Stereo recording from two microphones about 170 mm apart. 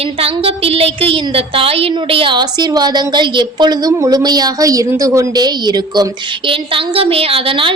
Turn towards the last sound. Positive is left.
turn(degrees=-30)  # may be behind; listen again after turning